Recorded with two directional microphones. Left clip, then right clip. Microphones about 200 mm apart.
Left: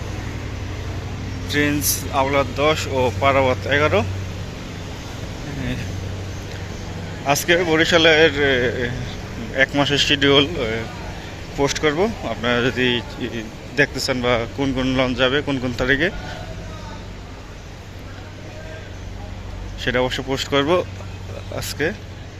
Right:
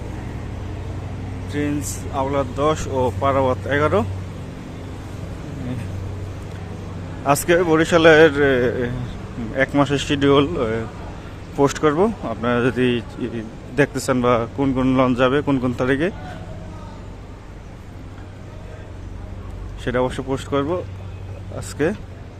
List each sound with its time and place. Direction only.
1.5 s speech: centre (ahead or behind)
2.6 s speech: 25° right (ahead or behind)
7.3 s speech: 20° right (ahead or behind)
19.8 s speech: 15° right (ahead or behind)